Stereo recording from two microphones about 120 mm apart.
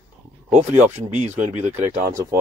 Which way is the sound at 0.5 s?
70° right (ahead or behind).